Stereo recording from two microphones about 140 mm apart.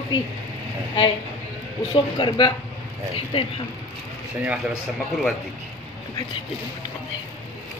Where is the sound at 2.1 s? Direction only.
35° left (ahead or behind).